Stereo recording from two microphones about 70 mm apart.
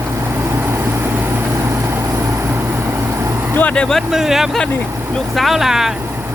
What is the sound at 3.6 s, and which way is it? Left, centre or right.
Speech, centre.